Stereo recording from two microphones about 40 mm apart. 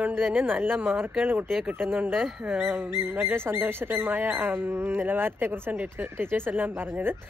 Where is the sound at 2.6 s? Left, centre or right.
Right.